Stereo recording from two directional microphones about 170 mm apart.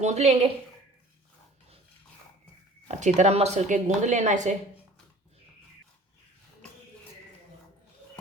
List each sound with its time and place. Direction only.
0.0 s a woman's voice: 40° right (ahead or behind)
2.8 s a woman's voice: 45° right (ahead or behind)